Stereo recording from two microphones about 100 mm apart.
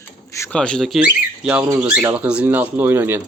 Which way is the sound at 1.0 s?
15° right (ahead or behind).